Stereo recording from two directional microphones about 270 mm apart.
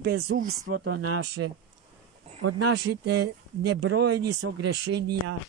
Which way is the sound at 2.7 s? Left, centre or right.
Right.